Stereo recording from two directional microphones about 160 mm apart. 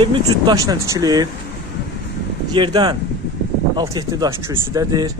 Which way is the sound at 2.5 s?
30° right (ahead or behind).